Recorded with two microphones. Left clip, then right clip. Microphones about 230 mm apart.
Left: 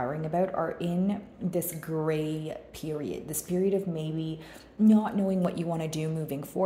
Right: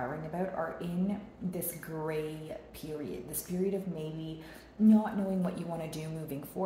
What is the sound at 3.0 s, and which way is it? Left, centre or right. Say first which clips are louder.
Speech: left 5 dB; left.